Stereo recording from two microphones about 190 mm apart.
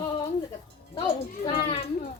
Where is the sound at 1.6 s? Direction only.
30° left (ahead or behind).